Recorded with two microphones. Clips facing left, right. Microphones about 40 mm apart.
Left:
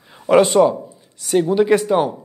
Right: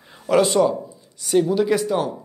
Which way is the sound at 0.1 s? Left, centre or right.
Centre.